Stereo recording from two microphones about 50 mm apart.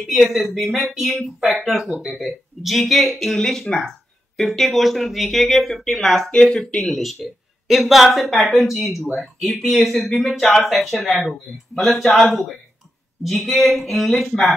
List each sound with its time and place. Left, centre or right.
0.1 s speech: centre
6.3 s speech: centre
6.9 s speech: centre